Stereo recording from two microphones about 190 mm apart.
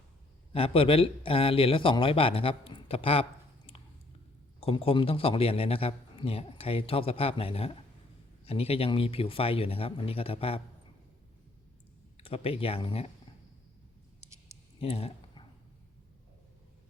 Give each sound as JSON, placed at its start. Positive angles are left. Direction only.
{"t": 0.5, "sound": "a man's voice", "side_deg": 30}
{"t": 4.6, "sound": "a man's voice", "side_deg": 30}
{"t": 12.1, "sound": "speech", "side_deg": 30}
{"t": 14.2, "sound": "clicking", "side_deg": -15}
{"t": 14.8, "sound": "a sound", "side_deg": 30}